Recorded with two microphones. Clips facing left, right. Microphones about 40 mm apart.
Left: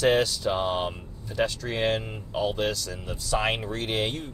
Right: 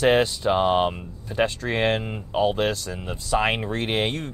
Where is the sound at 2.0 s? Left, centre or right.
Right.